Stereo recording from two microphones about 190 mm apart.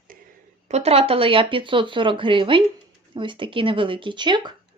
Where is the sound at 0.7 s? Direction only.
30° right (ahead or behind).